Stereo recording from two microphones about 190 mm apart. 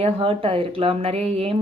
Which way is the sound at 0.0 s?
30° right (ahead or behind).